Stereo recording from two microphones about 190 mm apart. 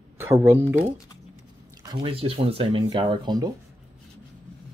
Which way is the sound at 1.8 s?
25° right (ahead or behind).